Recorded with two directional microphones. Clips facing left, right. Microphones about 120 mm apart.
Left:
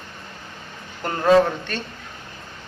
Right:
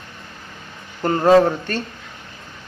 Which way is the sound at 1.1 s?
40° right (ahead or behind).